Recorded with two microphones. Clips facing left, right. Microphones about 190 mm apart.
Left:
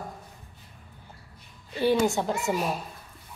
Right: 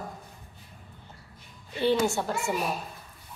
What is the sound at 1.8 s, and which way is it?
Speech, 10° left (ahead or behind).